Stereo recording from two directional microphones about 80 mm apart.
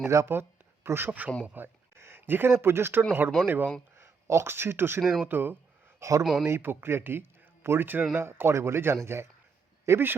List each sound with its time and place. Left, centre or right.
0.1 s a man's voice: right
3.9 s speech: right
6.0 s speech: right
6.4 s a man's voice: right